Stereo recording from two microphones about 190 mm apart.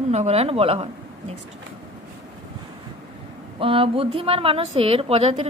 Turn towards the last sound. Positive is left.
turn(degrees=-30)  # may be behind; listen again after turning